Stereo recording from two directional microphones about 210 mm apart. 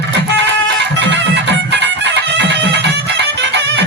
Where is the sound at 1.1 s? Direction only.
55° right (ahead or behind).